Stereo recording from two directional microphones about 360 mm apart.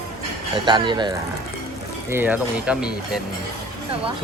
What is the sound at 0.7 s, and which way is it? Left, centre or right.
Speech, centre.